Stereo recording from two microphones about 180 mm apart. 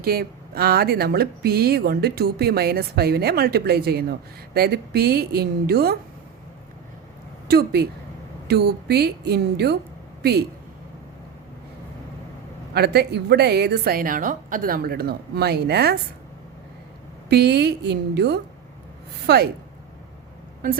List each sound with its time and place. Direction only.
0.0 s speech: 60° right (ahead or behind)
7.4 s a woman's voice: 60° right (ahead or behind)
12.7 s speech: 65° right (ahead or behind)
17.2 s a woman's voice: 65° right (ahead or behind)